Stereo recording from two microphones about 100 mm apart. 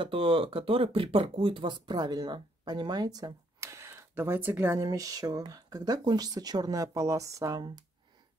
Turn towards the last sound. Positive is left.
turn(degrees=-40)  # may be behind; listen again after turning